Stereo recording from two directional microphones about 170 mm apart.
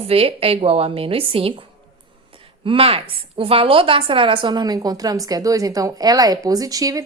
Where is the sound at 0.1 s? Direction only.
35° right (ahead or behind).